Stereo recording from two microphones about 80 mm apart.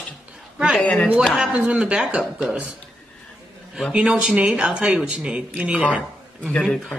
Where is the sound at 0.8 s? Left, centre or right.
Centre.